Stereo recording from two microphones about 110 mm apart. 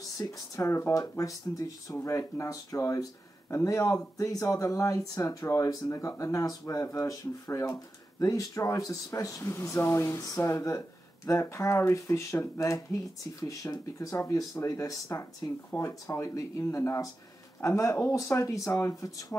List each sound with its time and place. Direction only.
0.2 s speech: 30° left (ahead or behind)